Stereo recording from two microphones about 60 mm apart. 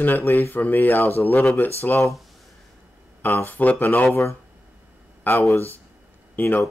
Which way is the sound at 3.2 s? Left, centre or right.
Left.